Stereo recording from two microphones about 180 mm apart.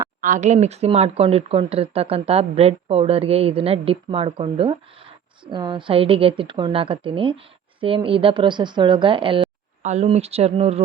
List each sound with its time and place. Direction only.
0.2 s a woman's voice: 45° right (ahead or behind); by 9.5 s 30° right (ahead or behind)
9.8 s speech: 40° right (ahead or behind)